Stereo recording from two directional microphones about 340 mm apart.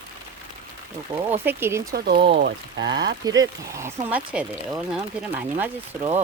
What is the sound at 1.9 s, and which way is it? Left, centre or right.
Speech, right.